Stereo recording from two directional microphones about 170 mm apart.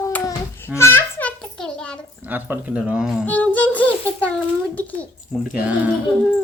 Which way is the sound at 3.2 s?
10° left (ahead or behind).